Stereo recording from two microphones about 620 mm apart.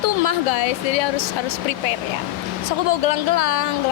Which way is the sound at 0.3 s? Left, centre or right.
Left.